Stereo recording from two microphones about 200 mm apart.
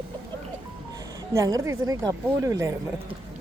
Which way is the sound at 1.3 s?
15° right (ahead or behind).